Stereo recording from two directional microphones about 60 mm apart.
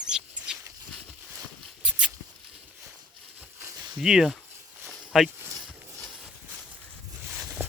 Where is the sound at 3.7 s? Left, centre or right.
Right.